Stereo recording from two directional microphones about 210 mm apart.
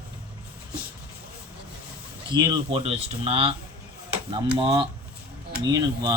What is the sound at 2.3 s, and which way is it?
Speech, 20° right (ahead or behind).